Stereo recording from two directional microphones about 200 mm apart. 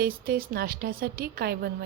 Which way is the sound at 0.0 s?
45° right (ahead or behind).